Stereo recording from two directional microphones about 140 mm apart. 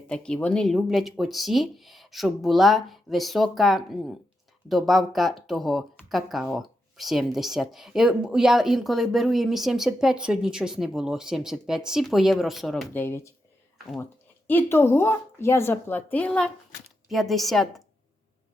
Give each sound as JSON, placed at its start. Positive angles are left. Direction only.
{"t": 0.1, "sound": "speech", "side_deg": 5}
{"t": 12.9, "sound": "speech", "side_deg": 15}